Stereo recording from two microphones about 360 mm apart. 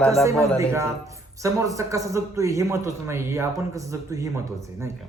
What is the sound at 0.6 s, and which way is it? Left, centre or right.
A man's voice, centre.